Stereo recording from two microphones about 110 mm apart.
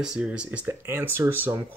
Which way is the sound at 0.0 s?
5° right (ahead or behind).